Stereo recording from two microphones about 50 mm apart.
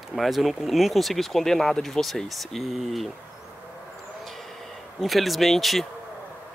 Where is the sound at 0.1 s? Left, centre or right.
Centre.